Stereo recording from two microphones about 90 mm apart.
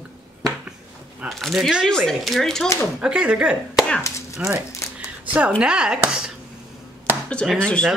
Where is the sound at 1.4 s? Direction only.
Centre (ahead or behind).